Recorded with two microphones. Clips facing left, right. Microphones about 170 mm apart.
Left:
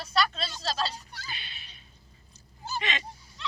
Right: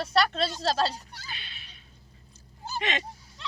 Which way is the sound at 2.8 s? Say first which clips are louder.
Right 3 dB; 55° right (ahead or behind).